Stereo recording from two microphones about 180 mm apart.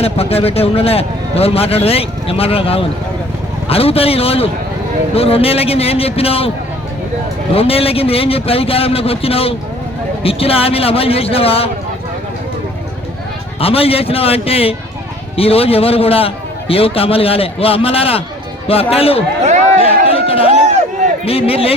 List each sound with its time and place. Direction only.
0.0 s a man's voice: 35° left (ahead or behind)
7.5 s a man's voice: 30° left (ahead or behind)
13.6 s a man's voice: 30° left (ahead or behind)
19.8 s a sound: 30° left (ahead or behind)
21.2 s a man's voice: 30° left (ahead or behind)